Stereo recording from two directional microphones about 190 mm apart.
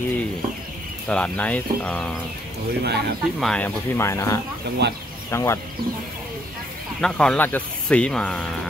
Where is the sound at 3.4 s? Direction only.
5° left (ahead or behind).